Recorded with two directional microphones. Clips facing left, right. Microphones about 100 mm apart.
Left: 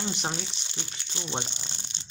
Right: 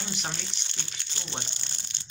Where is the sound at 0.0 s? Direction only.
30° left (ahead or behind).